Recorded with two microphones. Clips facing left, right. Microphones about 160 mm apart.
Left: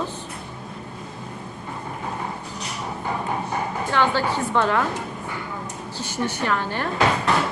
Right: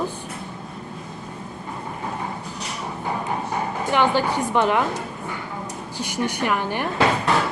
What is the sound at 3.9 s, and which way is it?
Speech, 15° right (ahead or behind).